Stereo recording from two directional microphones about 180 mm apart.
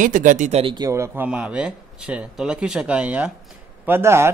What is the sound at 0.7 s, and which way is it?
Speech, 15° right (ahead or behind).